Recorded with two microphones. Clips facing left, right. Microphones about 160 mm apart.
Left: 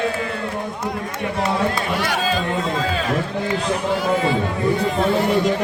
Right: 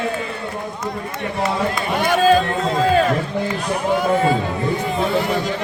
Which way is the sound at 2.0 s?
50° right (ahead or behind).